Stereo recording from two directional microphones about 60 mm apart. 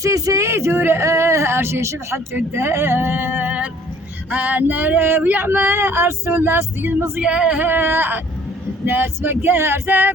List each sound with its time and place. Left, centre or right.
0.0 s speech: right
0.9 s speech: right
2.5 s male singing: right
7.2 s speech: centre
7.6 s male singing: right